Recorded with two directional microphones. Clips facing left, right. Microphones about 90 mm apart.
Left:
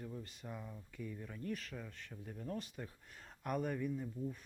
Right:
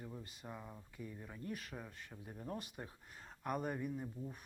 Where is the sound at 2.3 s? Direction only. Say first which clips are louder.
Left 2 dB; 25° right (ahead or behind).